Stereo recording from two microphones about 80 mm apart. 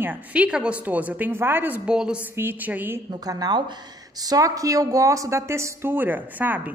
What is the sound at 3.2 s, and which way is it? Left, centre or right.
Speech, right.